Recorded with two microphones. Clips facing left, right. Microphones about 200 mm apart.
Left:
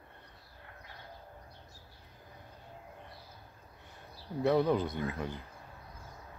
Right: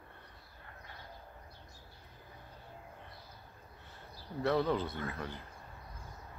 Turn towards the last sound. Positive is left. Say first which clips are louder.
# left 4 dB
turn(degrees=15)  # may be behind; listen again after turning